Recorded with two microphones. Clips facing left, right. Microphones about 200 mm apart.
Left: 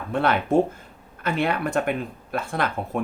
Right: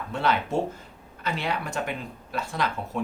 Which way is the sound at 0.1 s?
55° left (ahead or behind).